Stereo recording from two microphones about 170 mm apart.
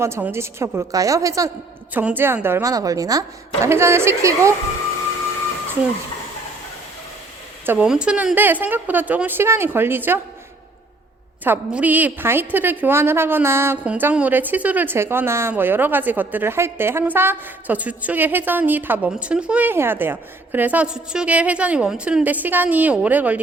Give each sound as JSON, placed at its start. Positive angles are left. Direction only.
{"t": 0.0, "sound": "a woman's voice", "side_deg": -15}
{"t": 7.6, "sound": "a woman's voice", "side_deg": -10}
{"t": 11.4, "sound": "a woman's voice", "side_deg": -10}